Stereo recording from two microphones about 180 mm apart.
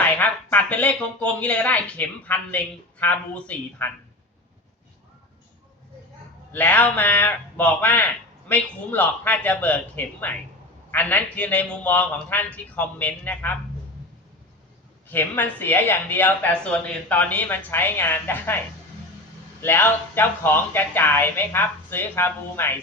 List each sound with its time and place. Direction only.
0.0 s speech: 10° left (ahead or behind)
6.5 s speech: 10° left (ahead or behind)
15.1 s speech: 10° left (ahead or behind)
19.6 s speech: 10° left (ahead or behind)